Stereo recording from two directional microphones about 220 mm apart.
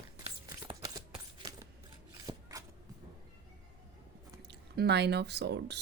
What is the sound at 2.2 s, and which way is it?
Shuffling cards, 15° right (ahead or behind).